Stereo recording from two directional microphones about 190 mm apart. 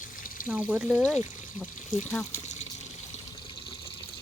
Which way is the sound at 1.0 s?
5° left (ahead or behind).